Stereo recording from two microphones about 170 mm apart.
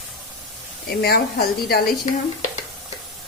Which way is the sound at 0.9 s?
65° left (ahead or behind).